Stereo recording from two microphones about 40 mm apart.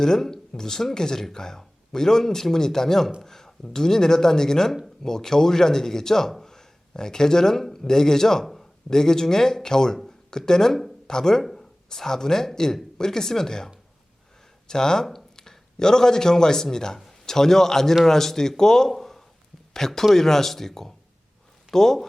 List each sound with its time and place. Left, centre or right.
0.0 s a man's voice: centre
3.2 s a sound: centre
3.6 s a man's voice: centre
14.7 s a man's voice: centre
18.9 s a sound: centre
19.7 s a man's voice: centre